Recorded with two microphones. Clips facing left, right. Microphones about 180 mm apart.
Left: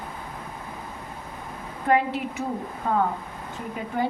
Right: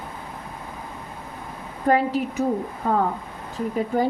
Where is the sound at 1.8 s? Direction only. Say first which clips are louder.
Right 2 dB; 40° right (ahead or behind).